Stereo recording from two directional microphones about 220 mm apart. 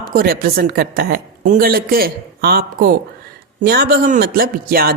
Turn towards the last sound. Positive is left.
turn(degrees=-45)  # may be behind; listen again after turning